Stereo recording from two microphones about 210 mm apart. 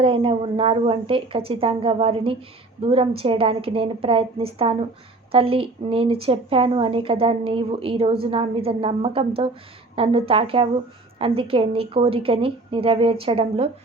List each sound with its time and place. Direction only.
0.0 s speech: 25° right (ahead or behind)